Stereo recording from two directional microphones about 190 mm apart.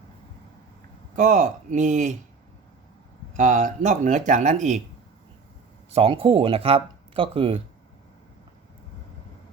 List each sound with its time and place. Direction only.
1.1 s speech: 40° right (ahead or behind)
3.3 s speech: 40° right (ahead or behind)
5.9 s speech: 30° right (ahead or behind)